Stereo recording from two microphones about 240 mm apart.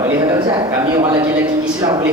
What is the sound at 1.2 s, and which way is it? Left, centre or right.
Speech, centre.